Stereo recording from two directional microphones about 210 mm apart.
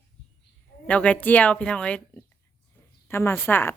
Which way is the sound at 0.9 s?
5° left (ahead or behind).